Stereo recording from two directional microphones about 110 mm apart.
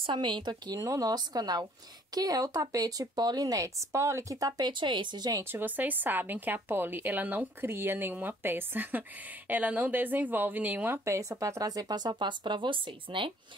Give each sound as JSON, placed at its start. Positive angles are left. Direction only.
{"t": 0.0, "sound": "speech", "side_deg": -45}
{"t": 0.7, "sound": "speech", "side_deg": -30}
{"t": 5.4, "sound": "a woman's voice", "side_deg": -20}